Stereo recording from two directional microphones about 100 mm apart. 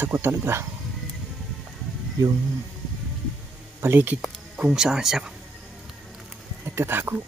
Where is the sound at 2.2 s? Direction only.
40° right (ahead or behind).